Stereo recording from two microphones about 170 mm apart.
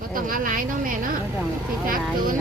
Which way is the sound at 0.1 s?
55° right (ahead or behind).